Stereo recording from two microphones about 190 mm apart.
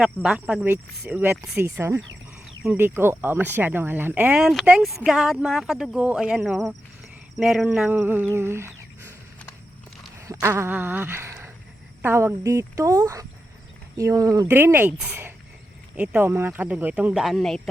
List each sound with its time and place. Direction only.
0.0 s speech: 5° right (ahead or behind)
10.4 s a sound: 15° right (ahead or behind)
12.0 s speech: 15° right (ahead or behind)